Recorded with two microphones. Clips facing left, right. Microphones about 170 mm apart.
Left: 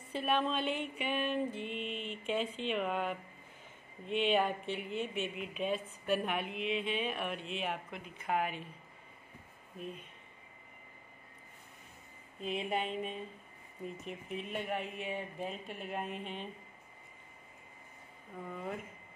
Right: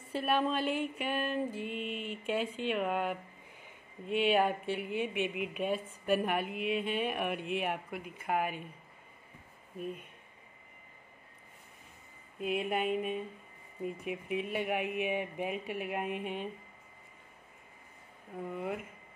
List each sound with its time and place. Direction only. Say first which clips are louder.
0.1 s music: right 2 dB; 5° right (ahead or behind)
3.6 s speech: right 3 dB; 5° right (ahead or behind)
5.4 s a woman's voice: right 3 dB; 55° right (ahead or behind)
5.7 s music: right 2 dB; 10° right (ahead or behind)
9.8 s speech: right 4 dB; 5° right (ahead or behind)
12.4 s music: right 3 dB; 5° right (ahead or behind)
18.5 s music: right 4 dB; 10° right (ahead or behind)